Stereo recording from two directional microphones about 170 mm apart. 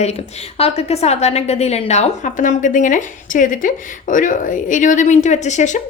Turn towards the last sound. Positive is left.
turn(degrees=45)  # may be behind; listen again after turning